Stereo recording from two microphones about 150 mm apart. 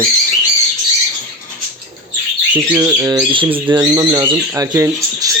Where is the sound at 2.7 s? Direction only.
20° right (ahead or behind).